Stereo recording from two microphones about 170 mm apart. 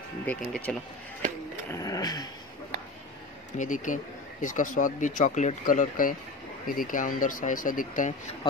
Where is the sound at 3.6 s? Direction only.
50° left (ahead or behind).